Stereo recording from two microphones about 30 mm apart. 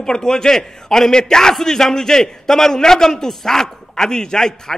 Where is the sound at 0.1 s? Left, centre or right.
Left.